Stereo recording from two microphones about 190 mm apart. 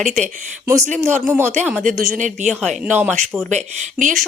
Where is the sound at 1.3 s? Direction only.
15° right (ahead or behind).